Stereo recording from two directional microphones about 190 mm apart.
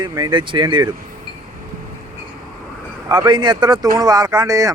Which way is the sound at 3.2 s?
25° right (ahead or behind).